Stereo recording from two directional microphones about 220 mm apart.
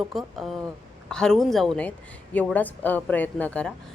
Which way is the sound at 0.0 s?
Centre (ahead or behind).